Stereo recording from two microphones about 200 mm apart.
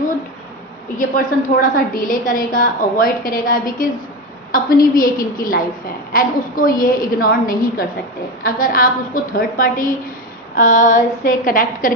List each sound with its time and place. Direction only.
0.9 s a woman's voice: 45° left (ahead or behind)